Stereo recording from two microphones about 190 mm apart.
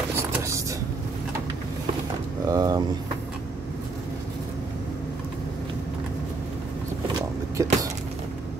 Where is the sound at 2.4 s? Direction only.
20° right (ahead or behind).